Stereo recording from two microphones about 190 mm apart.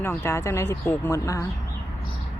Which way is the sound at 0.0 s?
15° left (ahead or behind).